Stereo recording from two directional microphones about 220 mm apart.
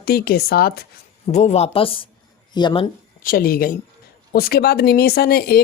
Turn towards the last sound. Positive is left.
turn(degrees=45)  # may be behind; listen again after turning